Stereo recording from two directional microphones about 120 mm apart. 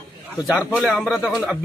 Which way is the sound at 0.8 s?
5° left (ahead or behind).